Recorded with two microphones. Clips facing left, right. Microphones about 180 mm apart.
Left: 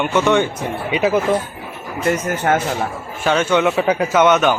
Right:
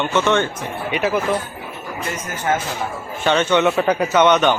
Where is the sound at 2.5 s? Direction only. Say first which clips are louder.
Left 3 dB; 55° left (ahead or behind).